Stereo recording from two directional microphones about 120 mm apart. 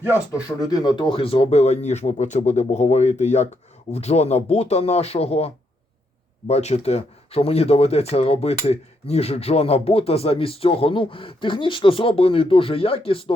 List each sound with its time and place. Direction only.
0.4 s speech: 35° left (ahead or behind); by 3.5 s 75° left (ahead or behind)
3.9 s speech: 60° left (ahead or behind)
6.5 s speech: 65° left (ahead or behind); by 13.3 s 50° left (ahead or behind)